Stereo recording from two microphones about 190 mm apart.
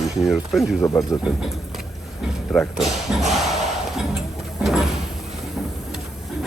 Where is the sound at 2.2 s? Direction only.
Centre (ahead or behind).